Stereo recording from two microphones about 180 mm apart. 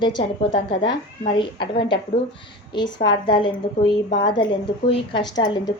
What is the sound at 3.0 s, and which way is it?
Speech, 25° left (ahead or behind).